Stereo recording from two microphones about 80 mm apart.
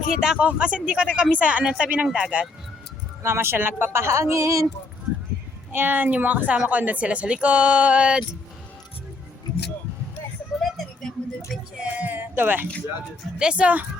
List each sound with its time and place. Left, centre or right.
0.2 s speech: centre
3.2 s speech: right
5.7 s a woman's voice: right
9.5 s vehicle: left
10.6 s a sound: centre
11.8 s a sound: centre
13.4 s speech: centre